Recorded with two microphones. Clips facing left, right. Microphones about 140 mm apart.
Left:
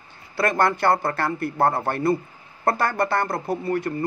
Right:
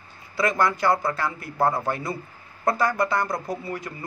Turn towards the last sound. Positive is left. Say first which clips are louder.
# left 6 dB
turn(degrees=60)  # may be behind; listen again after turning